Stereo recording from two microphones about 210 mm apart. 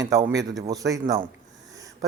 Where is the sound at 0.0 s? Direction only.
15° right (ahead or behind).